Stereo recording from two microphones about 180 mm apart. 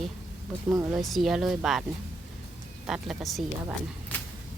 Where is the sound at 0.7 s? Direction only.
20° right (ahead or behind).